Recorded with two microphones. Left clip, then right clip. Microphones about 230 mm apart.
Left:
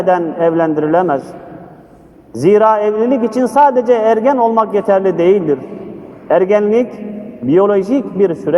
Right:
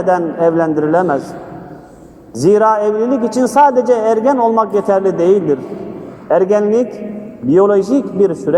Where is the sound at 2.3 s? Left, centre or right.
Left.